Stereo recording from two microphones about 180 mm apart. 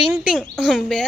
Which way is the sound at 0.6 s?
Centre (ahead or behind).